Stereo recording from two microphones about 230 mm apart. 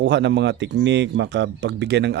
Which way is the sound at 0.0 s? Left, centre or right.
Right.